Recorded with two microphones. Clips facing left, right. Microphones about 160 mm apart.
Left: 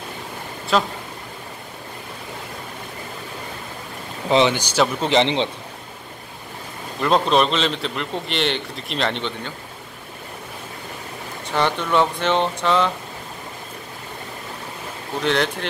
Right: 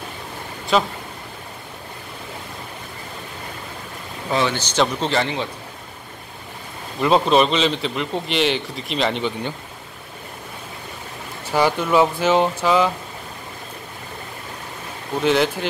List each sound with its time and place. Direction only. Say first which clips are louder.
0.7 s a man's voice: right 1 dB; centre (ahead or behind)
4.3 s speech: left 4 dB; 20° left (ahead or behind)
5.2 s a man's voice: left 4 dB; 25° left (ahead or behind)
7.0 s a man's voice: right 2 dB; 5° right (ahead or behind)
11.4 s a man's voice: right 3 dB; 5° right (ahead or behind)
15.2 s a man's voice: right 3 dB; 5° right (ahead or behind)